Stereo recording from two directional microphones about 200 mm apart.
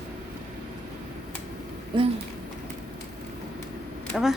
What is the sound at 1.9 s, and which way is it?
Speech, 25° right (ahead or behind).